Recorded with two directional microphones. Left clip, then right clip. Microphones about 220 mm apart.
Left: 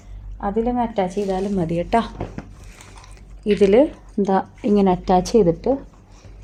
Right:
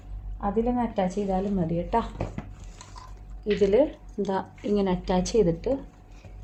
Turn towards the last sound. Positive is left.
turn(degrees=35)  # may be behind; listen again after turning